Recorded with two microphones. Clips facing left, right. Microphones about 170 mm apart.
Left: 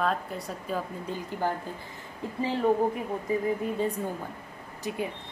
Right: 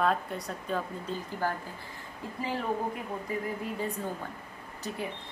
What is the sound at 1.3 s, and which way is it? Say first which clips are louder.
Speech: left 2 dB; 20° left (ahead or behind).